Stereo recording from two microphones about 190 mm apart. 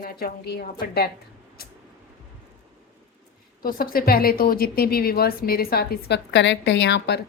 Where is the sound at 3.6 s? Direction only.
50° left (ahead or behind); by 7.2 s 65° left (ahead or behind).